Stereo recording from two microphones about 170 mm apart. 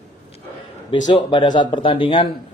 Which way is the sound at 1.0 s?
25° left (ahead or behind).